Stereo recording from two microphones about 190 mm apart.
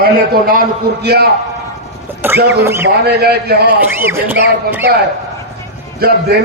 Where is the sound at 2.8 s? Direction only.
55° right (ahead or behind).